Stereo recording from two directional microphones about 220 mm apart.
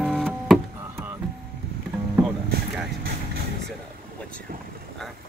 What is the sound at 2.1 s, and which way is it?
Rowboat, centre (ahead or behind).